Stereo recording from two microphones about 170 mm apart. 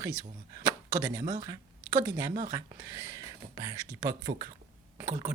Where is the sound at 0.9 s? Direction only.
20° right (ahead or behind).